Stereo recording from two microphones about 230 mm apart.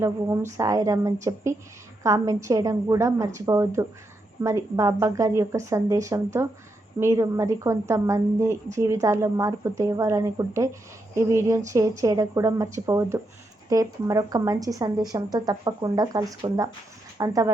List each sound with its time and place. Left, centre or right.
0.0 s a woman's voice: centre